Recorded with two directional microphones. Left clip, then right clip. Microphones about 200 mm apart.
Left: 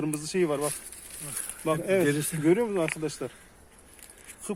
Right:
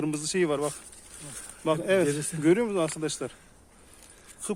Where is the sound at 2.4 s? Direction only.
Centre (ahead or behind).